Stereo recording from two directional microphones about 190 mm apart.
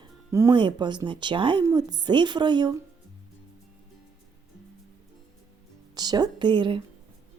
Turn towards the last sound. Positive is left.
turn(degrees=-25)  # may be behind; listen again after turning